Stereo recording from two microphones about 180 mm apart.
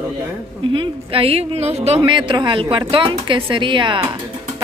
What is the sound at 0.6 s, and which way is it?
Speech, 30° right (ahead or behind).